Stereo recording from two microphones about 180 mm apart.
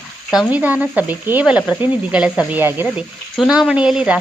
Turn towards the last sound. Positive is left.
turn(degrees=-5)  # may be behind; listen again after turning